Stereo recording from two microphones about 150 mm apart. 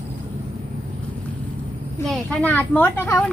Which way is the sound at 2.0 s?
5° left (ahead or behind).